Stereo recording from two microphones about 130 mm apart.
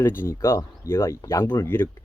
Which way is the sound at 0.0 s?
15° left (ahead or behind).